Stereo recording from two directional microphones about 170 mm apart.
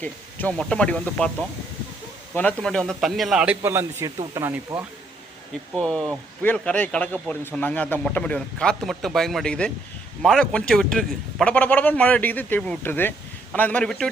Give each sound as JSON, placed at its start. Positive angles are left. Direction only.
{"t": 0.0, "sound": "a man's voice", "side_deg": 5}
{"t": 2.3, "sound": "a man's voice", "side_deg": 10}
{"t": 5.7, "sound": "a man's voice", "side_deg": 5}